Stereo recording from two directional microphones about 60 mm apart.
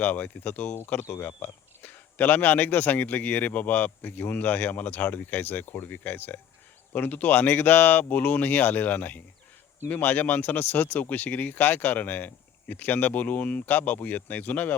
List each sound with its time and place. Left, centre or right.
0.0 s speech: left